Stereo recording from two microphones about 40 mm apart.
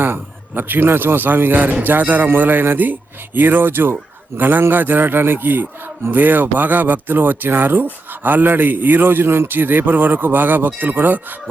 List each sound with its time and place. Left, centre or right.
0.0 s a man's voice: right
2.4 s a man's voice: right
9.6 s speech: right